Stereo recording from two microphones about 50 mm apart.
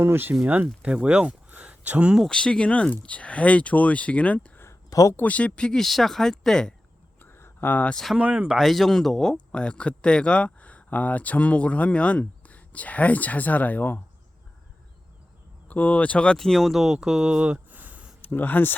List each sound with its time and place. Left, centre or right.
0.0 s speech: right
0.3 s speech: right
1.6 s a sound: right
2.3 s speech: centre
4.6 s a sound: left
5.2 s speech: left
5.7 s speech: centre
7.2 s a sound: left
8.2 s speech: right
8.5 s speech: centre; by 14.0 s left
15.7 s speech: left
16.4 s speech: centre
17.7 s a sound: right
18.2 s speech: left